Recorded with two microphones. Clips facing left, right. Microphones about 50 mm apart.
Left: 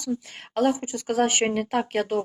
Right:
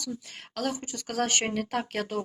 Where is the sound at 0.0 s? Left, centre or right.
Left.